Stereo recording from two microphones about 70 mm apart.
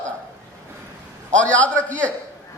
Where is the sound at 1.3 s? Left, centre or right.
Left.